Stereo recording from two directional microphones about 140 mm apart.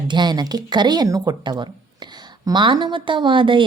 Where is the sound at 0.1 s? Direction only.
30° right (ahead or behind).